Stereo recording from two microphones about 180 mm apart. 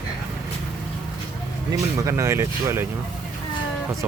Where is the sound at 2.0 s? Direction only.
15° right (ahead or behind).